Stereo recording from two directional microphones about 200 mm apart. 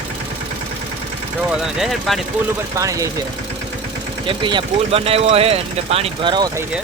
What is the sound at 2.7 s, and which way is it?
Speech, 15° right (ahead or behind).